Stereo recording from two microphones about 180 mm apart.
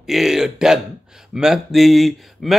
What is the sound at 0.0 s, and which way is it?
A man's voice, centre (ahead or behind).